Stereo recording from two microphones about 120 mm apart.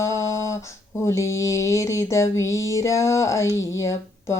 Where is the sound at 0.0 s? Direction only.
25° left (ahead or behind).